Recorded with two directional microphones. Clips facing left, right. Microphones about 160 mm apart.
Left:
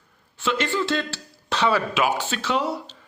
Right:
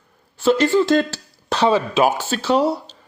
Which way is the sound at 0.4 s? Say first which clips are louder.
Right 9 dB; 40° right (ahead or behind).